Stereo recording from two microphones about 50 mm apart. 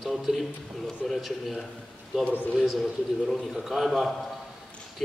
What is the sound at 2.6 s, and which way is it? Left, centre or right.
A man's voice, centre.